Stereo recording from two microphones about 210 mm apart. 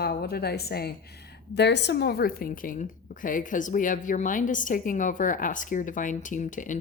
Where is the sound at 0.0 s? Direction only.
50° left (ahead or behind).